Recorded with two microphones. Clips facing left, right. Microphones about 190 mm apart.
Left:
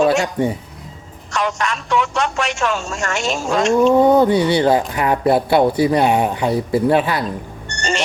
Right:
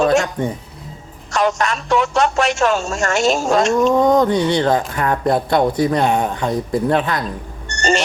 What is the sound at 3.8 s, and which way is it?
Speech, 10° left (ahead or behind).